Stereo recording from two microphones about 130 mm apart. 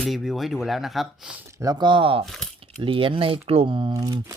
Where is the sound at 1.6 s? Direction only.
30° right (ahead or behind).